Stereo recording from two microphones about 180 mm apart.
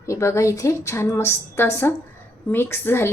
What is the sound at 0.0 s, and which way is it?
A woman's voice, 15° left (ahead or behind).